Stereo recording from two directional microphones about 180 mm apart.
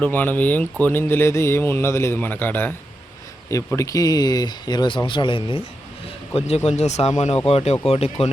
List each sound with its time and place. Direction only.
0.0 s speech: 10° left (ahead or behind); by 5.6 s 30° left (ahead or behind)
6.7 s speech: 40° left (ahead or behind)